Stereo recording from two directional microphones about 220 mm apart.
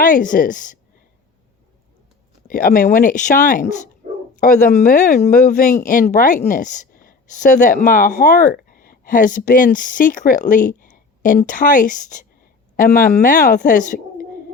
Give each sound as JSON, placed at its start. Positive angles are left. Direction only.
{"t": 0.0, "sound": "speech", "side_deg": 35}
{"t": 2.5, "sound": "speech", "side_deg": 40}
{"t": 4.9, "sound": "a woman's voice", "side_deg": 35}